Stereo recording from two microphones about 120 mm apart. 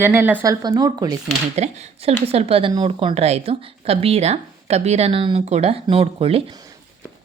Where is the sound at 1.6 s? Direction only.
65° right (ahead or behind).